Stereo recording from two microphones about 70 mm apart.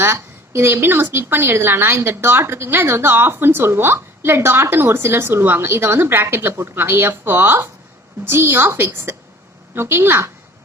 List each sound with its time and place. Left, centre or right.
0.0 s a woman's voice: right